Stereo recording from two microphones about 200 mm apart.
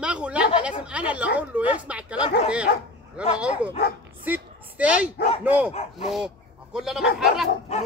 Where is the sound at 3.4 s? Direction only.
5° right (ahead or behind).